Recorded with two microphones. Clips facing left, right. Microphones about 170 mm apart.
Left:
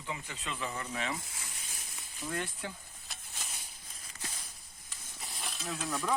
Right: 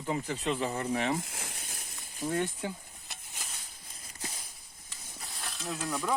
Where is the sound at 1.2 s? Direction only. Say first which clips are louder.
Right 5 dB; 70° right (ahead or behind).